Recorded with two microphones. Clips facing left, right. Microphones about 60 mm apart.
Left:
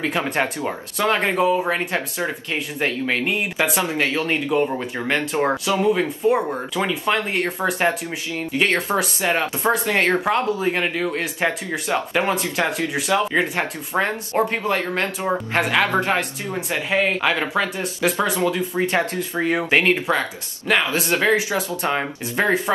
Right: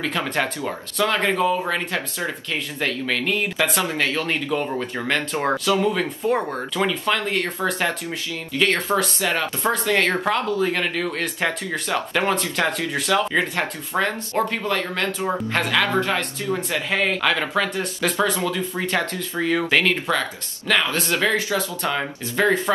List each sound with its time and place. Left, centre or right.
0.0 s speech: left; by 6.8 s centre
6.9 s speech: left